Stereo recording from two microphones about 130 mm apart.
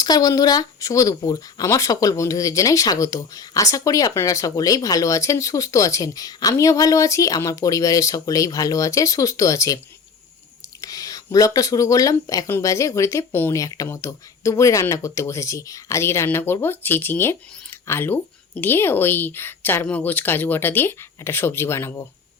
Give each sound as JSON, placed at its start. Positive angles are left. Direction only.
{"t": 0.0, "sound": "speech", "side_deg": 30}